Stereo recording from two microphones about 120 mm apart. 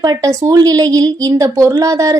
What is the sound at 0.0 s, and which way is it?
A woman's voice, 30° right (ahead or behind).